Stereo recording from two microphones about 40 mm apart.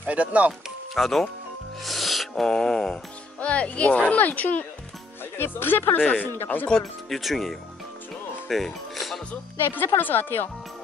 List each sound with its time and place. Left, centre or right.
0.0 s speech: right
0.9 s speech: centre
1.8 s music: centre
2.4 s speech: centre
3.3 s speech: left
4.1 s speech: left
5.2 s speech: left
5.9 s speech: left
6.2 s speech: left
7.1 s speech: centre
8.5 s music: centre
9.7 s speech: left